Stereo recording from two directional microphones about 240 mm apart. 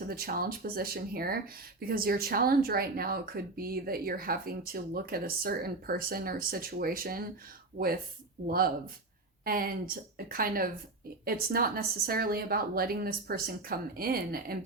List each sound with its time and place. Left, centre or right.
0.1 s speech: right
8.4 s speech: right